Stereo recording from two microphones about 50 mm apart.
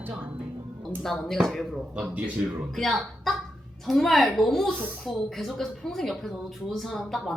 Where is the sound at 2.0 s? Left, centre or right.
Right.